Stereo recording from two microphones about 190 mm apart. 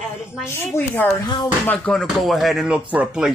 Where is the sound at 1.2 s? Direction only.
25° left (ahead or behind).